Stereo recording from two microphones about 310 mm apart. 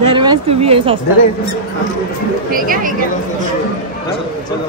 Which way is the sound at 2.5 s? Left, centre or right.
Right.